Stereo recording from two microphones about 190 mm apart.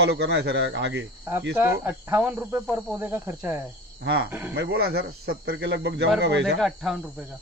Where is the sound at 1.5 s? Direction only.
10° right (ahead or behind).